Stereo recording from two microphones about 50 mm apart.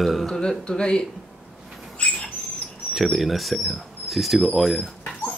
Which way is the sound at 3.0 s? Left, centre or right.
Centre.